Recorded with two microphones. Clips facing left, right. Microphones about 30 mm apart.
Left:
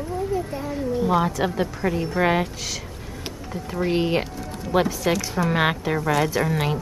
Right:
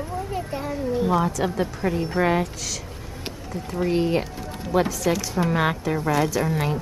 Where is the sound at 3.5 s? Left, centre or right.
Centre.